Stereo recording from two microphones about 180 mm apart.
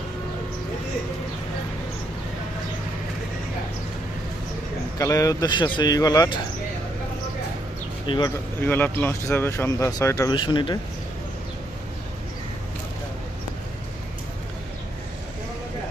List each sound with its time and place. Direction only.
4.9 s speech: 20° left (ahead or behind)
8.0 s speech: 30° left (ahead or behind)
8.6 s speech: 10° left (ahead or behind); by 10.8 s 25° left (ahead or behind)